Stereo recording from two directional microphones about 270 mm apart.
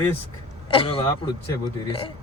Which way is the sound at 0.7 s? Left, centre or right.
Centre.